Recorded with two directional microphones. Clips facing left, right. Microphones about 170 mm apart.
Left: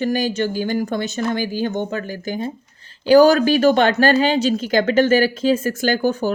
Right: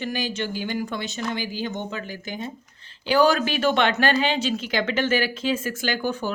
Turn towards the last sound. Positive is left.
turn(degrees=40)  # may be behind; listen again after turning